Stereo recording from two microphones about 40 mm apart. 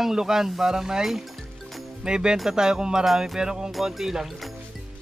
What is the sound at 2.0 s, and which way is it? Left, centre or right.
Speech, centre.